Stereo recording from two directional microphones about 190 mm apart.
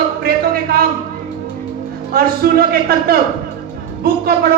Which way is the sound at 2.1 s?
50° right (ahead or behind).